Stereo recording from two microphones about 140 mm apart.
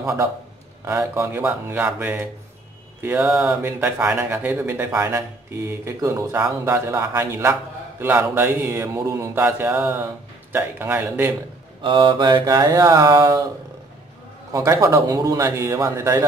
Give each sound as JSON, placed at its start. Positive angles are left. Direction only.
{"t": 0.0, "sound": "a man's voice", "side_deg": -20}
{"t": 11.8, "sound": "a man's voice", "side_deg": -35}
{"t": 14.5, "sound": "a man's voice", "side_deg": -20}